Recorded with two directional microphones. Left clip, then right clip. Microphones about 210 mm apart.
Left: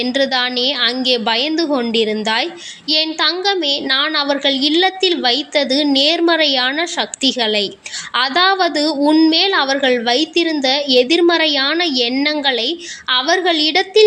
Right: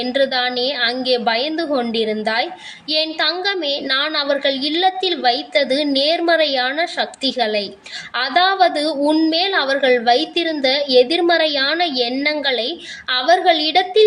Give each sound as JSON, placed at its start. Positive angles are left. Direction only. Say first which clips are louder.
{"t": 0.0, "sound": "a woman's voice", "louder": "left 1 dB", "side_deg": 25}